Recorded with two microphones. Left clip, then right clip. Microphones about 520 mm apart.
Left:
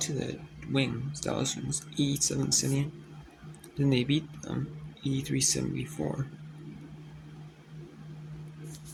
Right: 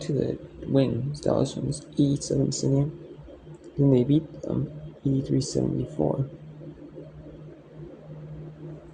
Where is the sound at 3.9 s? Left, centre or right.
Left.